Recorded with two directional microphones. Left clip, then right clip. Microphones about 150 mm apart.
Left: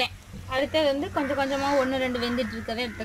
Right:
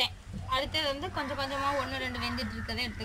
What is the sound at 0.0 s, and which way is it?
Speech, 55° left (ahead or behind).